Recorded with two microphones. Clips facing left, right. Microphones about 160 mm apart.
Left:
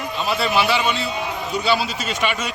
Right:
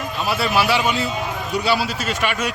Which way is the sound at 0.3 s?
5° right (ahead or behind).